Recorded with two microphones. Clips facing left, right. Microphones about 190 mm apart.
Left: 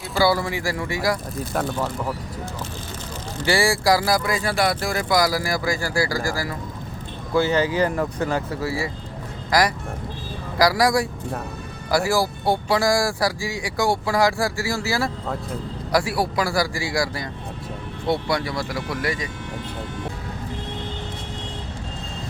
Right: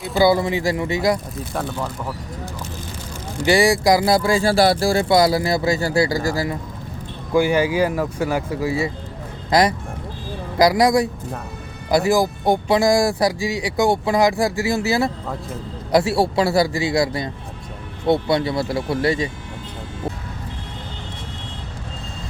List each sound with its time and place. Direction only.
0.2 s speech: 20° right (ahead or behind)
1.5 s speech: centre (ahead or behind)
3.4 s speech: 20° right (ahead or behind)